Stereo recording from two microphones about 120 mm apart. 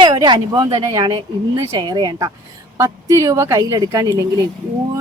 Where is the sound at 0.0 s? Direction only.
40° right (ahead or behind).